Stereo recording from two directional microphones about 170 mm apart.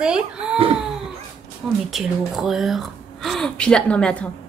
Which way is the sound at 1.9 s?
Centre (ahead or behind).